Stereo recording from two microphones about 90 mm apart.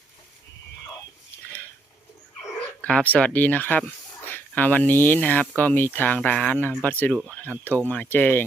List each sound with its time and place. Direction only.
2.8 s speech: 15° left (ahead or behind)